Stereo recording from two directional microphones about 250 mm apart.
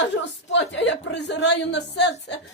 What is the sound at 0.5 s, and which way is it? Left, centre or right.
A woman's voice, left.